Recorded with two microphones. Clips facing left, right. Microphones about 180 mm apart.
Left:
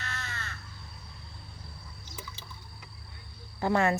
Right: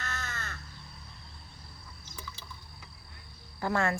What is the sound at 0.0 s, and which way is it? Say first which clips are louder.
Crow: right 1 dB; 45° right (ahead or behind).